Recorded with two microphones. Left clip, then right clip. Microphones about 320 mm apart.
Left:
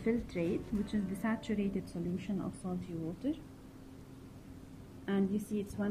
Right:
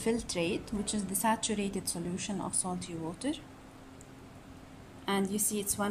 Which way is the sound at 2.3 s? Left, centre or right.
Right.